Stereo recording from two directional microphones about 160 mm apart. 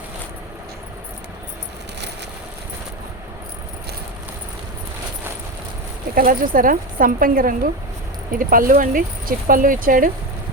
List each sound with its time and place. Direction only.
6.1 s speech: 60° right (ahead or behind)